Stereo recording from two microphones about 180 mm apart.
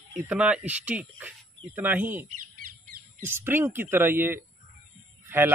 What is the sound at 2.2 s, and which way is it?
Bird, 50° right (ahead or behind).